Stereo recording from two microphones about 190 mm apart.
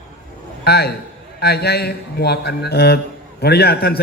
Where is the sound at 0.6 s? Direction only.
55° left (ahead or behind).